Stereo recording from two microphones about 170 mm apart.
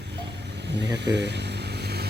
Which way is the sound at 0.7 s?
90° right.